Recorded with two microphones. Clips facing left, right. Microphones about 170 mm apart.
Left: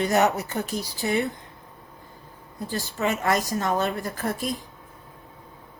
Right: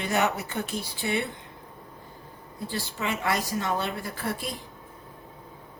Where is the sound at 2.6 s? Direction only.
45° left (ahead or behind).